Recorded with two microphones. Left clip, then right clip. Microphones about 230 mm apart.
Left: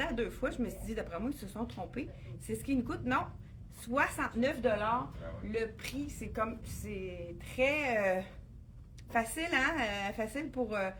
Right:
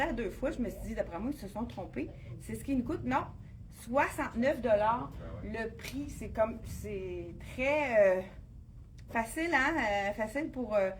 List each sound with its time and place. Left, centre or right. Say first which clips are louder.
0.0 s speech: right 1 dB; left